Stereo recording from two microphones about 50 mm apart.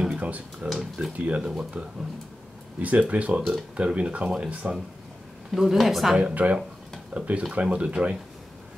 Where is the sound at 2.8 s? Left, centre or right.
Right.